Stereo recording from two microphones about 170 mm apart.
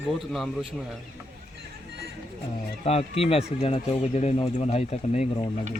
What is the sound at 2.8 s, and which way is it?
Speech, 35° left (ahead or behind).